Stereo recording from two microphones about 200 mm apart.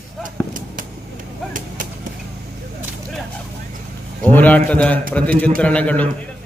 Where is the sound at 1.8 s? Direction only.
40° right (ahead or behind).